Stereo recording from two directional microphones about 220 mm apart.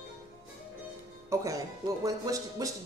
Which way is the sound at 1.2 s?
15° right (ahead or behind).